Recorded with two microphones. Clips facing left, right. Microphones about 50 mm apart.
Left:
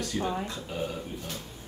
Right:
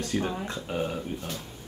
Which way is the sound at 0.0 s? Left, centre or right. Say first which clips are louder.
Right 1 dB; right.